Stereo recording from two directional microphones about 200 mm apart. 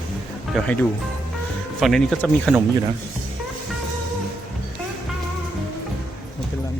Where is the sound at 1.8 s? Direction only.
Centre (ahead or behind).